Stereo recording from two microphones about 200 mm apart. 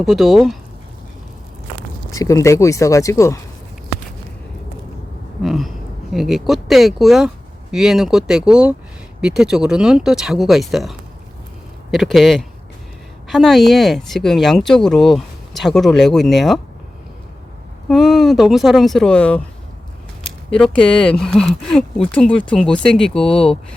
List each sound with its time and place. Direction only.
0.0 s speech: centre (ahead or behind)
2.1 s speech: 15° left (ahead or behind)
5.4 s a sound: centre (ahead or behind)
6.1 s speech: centre (ahead or behind)
17.8 s speech: centre (ahead or behind)
20.5 s speech: 5° left (ahead or behind)